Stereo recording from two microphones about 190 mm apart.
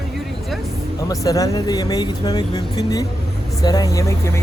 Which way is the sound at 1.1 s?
20° left (ahead or behind).